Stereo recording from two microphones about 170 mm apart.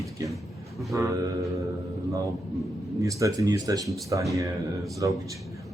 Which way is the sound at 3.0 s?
20° right (ahead or behind).